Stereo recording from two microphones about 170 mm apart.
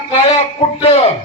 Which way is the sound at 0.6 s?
35° left (ahead or behind).